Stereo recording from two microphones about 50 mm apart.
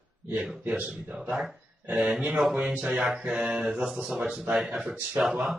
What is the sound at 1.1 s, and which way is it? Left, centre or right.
Speech, centre.